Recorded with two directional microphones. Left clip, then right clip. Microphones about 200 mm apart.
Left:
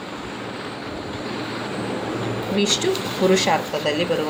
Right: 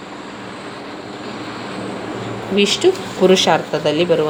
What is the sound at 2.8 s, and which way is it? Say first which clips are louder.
Speech: right 6 dB; 45° right (ahead or behind).